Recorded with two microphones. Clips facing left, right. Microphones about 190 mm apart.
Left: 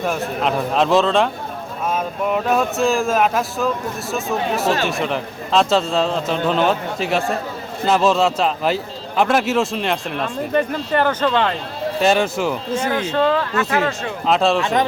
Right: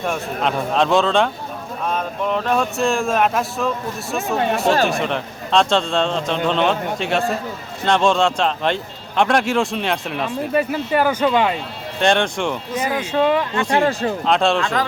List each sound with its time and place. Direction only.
0.0 s a man's voice: centre (ahead or behind)
11.9 s a man's voice: 5° left (ahead or behind)
12.8 s speech: 10° right (ahead or behind)
13.5 s speech: 30° right (ahead or behind)
14.3 s a man's voice: centre (ahead or behind)
14.6 s speech: 20° left (ahead or behind)